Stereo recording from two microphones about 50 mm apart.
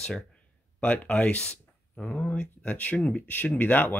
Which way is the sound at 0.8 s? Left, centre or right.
Left.